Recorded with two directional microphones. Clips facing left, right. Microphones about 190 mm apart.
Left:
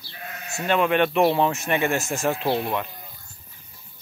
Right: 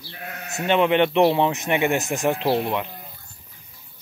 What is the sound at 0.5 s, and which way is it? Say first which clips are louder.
Speech: right 2 dB; 20° right (ahead or behind).